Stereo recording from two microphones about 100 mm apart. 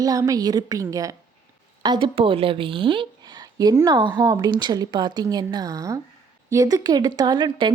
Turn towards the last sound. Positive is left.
turn(degrees=-50)  # may be behind; listen again after turning